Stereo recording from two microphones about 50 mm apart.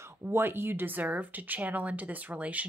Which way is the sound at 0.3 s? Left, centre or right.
Right.